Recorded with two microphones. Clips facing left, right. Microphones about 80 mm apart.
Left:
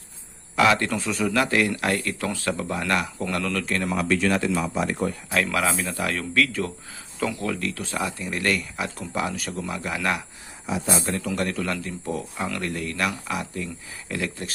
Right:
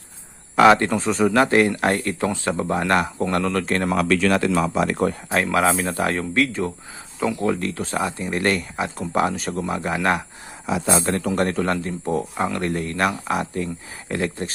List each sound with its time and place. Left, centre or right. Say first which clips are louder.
0.5 s speech: right 6 dB; right
3.9 s speech: right 3 dB; right
5.3 s speech: right 4 dB; right
10.7 s speech: right 5 dB; right
11.0 s speech: right 5 dB; right